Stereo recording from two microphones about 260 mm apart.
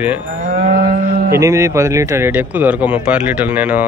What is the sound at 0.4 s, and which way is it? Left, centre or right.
Moo, right.